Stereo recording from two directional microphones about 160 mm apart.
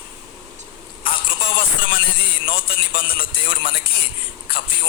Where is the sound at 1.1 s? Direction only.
65° left (ahead or behind).